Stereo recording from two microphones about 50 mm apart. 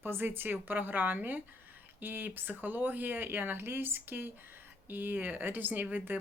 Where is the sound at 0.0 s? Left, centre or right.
Right.